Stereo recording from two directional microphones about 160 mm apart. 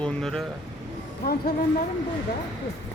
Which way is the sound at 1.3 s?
80° left.